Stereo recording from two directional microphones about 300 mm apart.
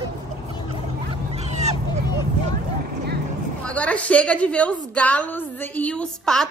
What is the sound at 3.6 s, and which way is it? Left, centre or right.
A woman's voice, centre.